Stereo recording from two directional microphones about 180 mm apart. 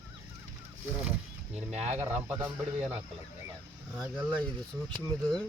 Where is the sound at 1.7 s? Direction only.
35° right (ahead or behind).